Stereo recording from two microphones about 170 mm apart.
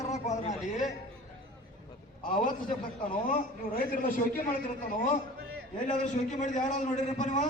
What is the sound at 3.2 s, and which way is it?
A man's voice, 55° left (ahead or behind).